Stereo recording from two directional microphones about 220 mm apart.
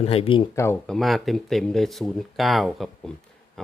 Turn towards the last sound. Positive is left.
turn(degrees=0)  # may be behind; listen again after turning